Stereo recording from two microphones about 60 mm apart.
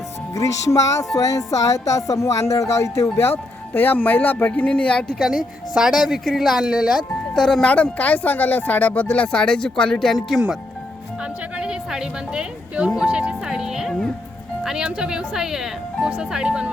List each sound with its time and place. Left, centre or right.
0.3 s speech: left
5.2 s a woman's voice: centre
7.3 s speech: centre
7.7 s speech: left; by 10.3 s centre
11.5 s music: centre
13.0 s a woman's voice: centre